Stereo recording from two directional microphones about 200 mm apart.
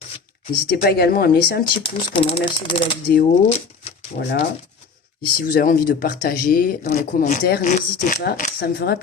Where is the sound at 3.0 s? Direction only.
50° left (ahead or behind).